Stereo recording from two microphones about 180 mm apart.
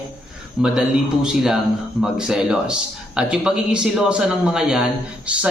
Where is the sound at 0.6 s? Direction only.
5° right (ahead or behind).